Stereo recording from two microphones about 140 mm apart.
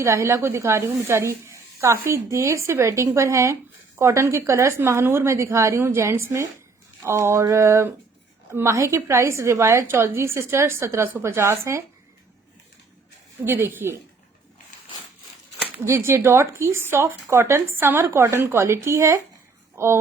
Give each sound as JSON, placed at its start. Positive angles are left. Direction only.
{"t": 0.0, "sound": "speech", "side_deg": -20}
{"t": 13.4, "sound": "speech", "side_deg": -15}
{"t": 15.8, "sound": "speech", "side_deg": -20}